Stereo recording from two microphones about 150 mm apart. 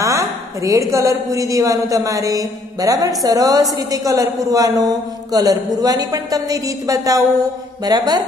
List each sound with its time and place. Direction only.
0.0 s a woman's voice: 20° right (ahead or behind)